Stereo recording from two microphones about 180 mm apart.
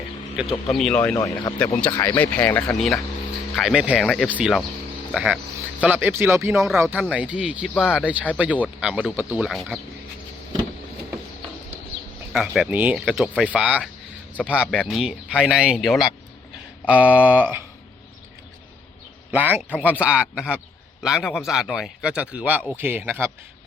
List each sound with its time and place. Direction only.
0.3 s speech: centre (ahead or behind)
1.1 s speech: 20° left (ahead or behind); by 4.3 s centre (ahead or behind)
4.3 s speech: 10° right (ahead or behind)
12.3 s speech: centre (ahead or behind)
19.3 s speech: 10° right (ahead or behind)